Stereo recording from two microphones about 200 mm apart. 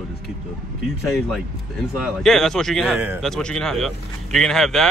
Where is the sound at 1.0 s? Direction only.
Centre (ahead or behind).